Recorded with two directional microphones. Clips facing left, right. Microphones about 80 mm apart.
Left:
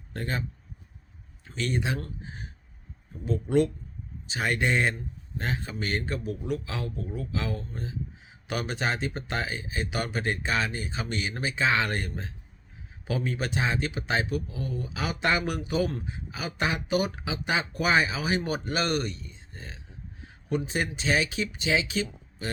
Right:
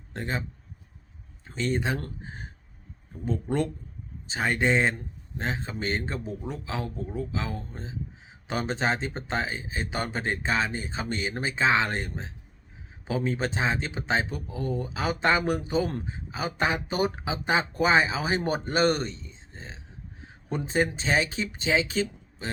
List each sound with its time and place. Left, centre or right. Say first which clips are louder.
0.1 s a man's voice: even; right
1.5 s speech: right 2 dB; right
2.2 s a sound: right 1 dB; right
4.3 s a man's voice: right 2 dB; right